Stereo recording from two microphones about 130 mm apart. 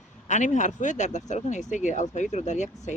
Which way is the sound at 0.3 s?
70° left (ahead or behind).